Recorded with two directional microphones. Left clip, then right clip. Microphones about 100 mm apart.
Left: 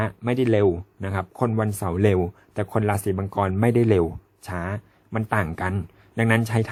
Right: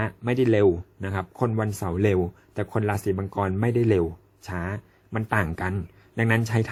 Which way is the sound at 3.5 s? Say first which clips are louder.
Left 6 dB; 50° left (ahead or behind).